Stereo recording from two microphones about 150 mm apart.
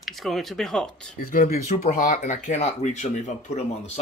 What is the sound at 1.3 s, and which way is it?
Speech, 55° left (ahead or behind).